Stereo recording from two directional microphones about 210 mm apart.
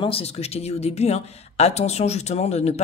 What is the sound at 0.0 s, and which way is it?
Speech, 30° left (ahead or behind).